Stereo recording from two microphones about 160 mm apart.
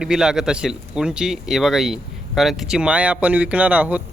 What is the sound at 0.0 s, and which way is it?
Speech, 5° right (ahead or behind).